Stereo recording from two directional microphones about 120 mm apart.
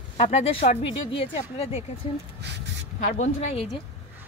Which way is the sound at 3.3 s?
55° left (ahead or behind).